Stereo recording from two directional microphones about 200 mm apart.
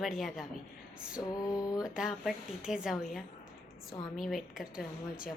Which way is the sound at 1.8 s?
5° right (ahead or behind).